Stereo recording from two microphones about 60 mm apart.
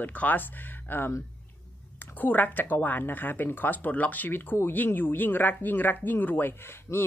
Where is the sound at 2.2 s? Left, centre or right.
Left.